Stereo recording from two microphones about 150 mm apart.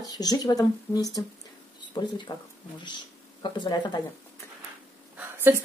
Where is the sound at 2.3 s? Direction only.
30° left (ahead or behind).